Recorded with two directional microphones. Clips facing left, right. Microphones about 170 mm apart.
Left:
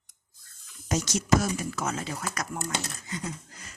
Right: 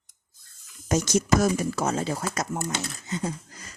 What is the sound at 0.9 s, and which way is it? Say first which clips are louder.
Speech: right 3 dB; 50° right (ahead or behind).